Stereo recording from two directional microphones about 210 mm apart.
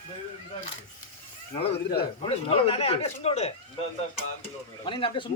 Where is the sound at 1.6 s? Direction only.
50° left (ahead or behind).